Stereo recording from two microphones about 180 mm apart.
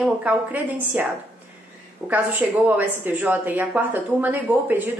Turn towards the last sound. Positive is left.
turn(degrees=-10)  # may be behind; listen again after turning